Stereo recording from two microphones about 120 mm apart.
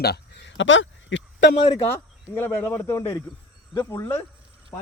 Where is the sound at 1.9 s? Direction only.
20° left (ahead or behind).